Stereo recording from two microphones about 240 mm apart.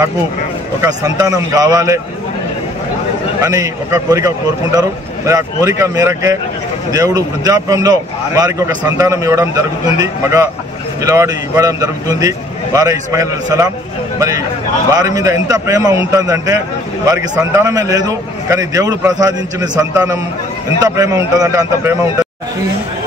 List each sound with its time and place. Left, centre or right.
0.8 s a man's voice: centre
3.3 s a man's voice: centre
14.9 s a man's voice: centre